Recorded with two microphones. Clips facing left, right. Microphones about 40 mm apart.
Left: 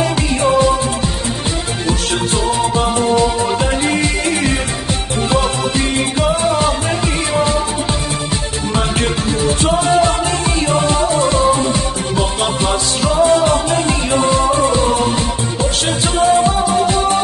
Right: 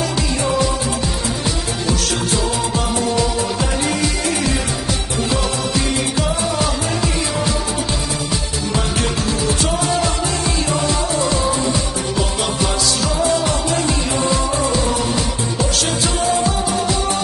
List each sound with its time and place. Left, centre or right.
0.4 s music: left
3.0 s music: left
6.2 s music: left
9.7 s music: left
13.0 s music: left
16.2 s music: left